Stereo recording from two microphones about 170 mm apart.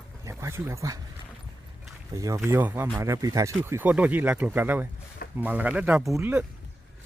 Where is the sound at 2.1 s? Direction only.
20° right (ahead or behind).